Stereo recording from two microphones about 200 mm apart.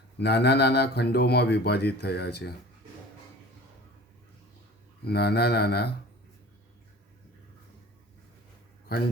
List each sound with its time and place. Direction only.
0.2 s speech: 55° left (ahead or behind)
5.0 s mantra: 55° left (ahead or behind)